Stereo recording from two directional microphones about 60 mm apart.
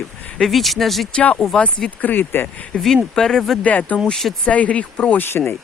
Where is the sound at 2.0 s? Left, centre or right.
Left.